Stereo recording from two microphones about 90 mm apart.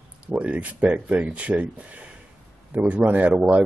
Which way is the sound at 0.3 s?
15° right (ahead or behind).